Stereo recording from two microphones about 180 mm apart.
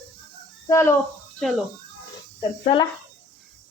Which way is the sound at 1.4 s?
5° left (ahead or behind).